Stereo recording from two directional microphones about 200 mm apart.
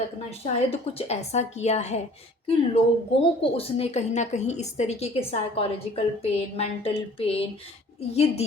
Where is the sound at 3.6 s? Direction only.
30° left (ahead or behind).